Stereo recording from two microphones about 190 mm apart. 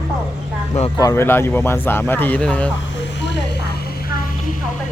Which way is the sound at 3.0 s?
65° left (ahead or behind).